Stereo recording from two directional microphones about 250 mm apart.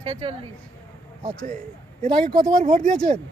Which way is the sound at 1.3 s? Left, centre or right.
Centre.